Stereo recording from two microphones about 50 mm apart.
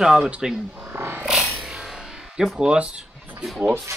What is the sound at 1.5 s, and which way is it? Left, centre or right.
Music, centre.